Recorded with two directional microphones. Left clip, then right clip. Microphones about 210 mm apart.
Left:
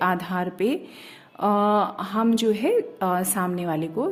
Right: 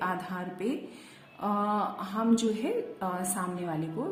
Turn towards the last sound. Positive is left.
turn(degrees=45)  # may be behind; listen again after turning